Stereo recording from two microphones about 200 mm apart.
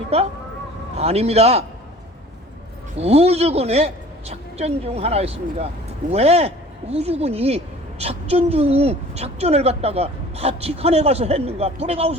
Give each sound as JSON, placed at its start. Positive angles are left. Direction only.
{"t": 0.1, "sound": "a woman's voice", "side_deg": -30}
{"t": 3.0, "sound": "a woman's voice", "side_deg": -30}